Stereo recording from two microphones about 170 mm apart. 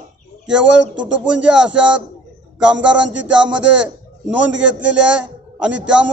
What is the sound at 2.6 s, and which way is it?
A man's voice, 5° right (ahead or behind).